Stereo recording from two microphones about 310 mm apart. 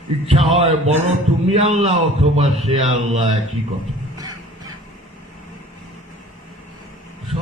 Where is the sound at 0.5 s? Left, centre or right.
Centre.